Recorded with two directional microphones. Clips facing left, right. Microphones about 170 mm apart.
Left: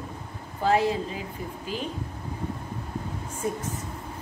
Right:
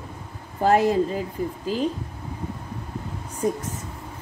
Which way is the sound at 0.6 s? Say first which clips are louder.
Right 5 dB; 45° right (ahead or behind).